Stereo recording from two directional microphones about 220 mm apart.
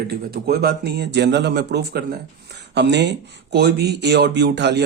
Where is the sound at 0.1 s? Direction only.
45° right (ahead or behind).